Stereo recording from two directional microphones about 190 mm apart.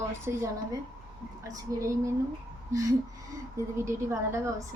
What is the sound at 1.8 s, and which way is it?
Speech, 15° right (ahead or behind).